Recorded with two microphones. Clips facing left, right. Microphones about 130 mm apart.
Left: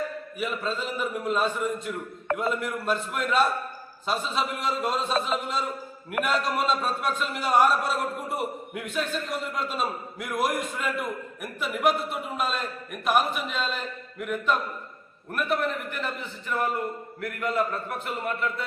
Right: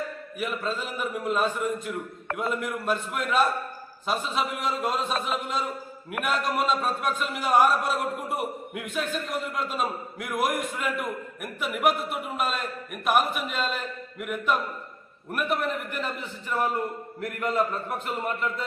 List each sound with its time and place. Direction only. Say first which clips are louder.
0.3 s a man's voice: even; 5° right (ahead or behind)
17.2 s speech: right 1 dB; 35° right (ahead or behind)